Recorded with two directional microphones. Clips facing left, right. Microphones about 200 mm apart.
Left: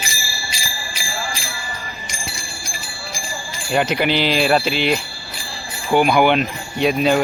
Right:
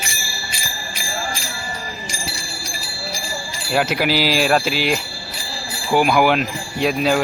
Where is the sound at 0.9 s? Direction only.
45° right (ahead or behind).